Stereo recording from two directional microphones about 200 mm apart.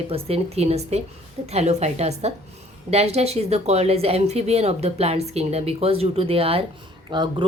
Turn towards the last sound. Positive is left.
turn(degrees=-20)  # may be behind; listen again after turning